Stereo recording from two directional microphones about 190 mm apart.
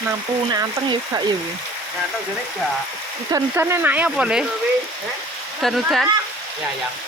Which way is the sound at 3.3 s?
15° right (ahead or behind).